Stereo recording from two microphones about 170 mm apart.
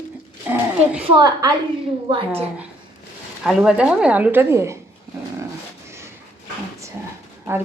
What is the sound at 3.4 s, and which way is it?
A woman's voice, 5° right (ahead or behind).